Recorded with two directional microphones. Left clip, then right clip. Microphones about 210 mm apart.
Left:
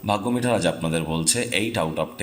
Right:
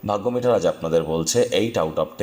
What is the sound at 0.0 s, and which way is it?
Speech, 10° right (ahead or behind).